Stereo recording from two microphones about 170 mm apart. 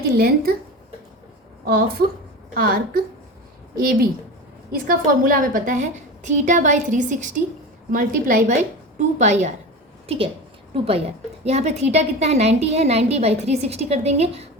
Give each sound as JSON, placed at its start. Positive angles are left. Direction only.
{"t": 0.0, "sound": "speech", "side_deg": -60}
{"t": 1.6, "sound": "a woman's voice", "side_deg": -65}
{"t": 11.4, "sound": "a woman's voice", "side_deg": -40}